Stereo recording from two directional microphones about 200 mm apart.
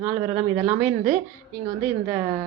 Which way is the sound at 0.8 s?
40° right (ahead or behind).